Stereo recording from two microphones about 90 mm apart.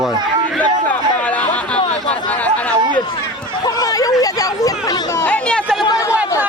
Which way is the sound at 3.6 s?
45° left (ahead or behind).